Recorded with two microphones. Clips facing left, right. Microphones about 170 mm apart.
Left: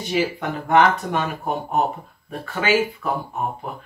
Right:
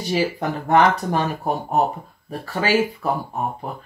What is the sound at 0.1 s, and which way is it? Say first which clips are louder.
Speech: right 1 dB; 35° right (ahead or behind).